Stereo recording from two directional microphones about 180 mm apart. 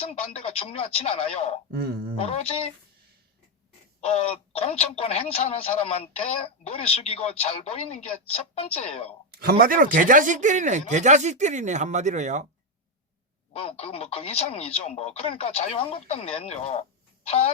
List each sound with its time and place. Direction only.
0.0 s speech: 30° left (ahead or behind)
4.0 s speech: 35° left (ahead or behind)
9.4 s speech: 60° right (ahead or behind); by 12.5 s 40° right (ahead or behind)
13.5 s speech: 35° left (ahead or behind)